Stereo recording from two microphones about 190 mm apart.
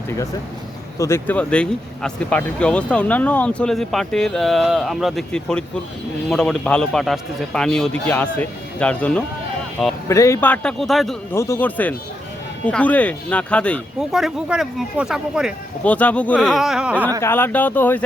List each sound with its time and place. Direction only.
0.9 s speech: 15° left (ahead or behind)
11.3 s speech: 15° left (ahead or behind); by 15.5 s 5° right (ahead or behind)
15.8 s speech: 5° left (ahead or behind)
17.2 s speech: 10° left (ahead or behind)